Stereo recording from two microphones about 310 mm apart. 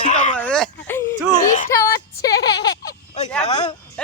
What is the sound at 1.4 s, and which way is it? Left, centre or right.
Speech, left.